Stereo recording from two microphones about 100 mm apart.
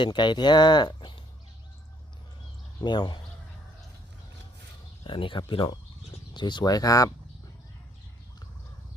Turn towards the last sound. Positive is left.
turn(degrees=35)  # may be behind; listen again after turning